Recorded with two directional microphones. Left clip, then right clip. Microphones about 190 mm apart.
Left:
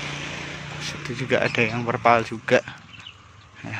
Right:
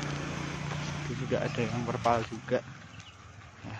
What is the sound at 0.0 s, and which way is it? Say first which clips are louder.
Vehicle: left 6 dB; 55° right (ahead or behind).